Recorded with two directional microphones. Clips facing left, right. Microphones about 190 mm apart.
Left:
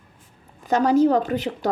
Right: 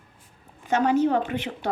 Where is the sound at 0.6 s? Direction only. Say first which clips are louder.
Left 4 dB; 35° left (ahead or behind).